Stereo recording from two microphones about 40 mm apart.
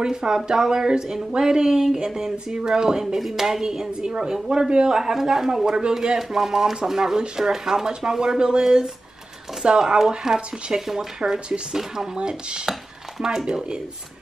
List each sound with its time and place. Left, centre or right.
0.0 s speech: centre
11.3 s speech: right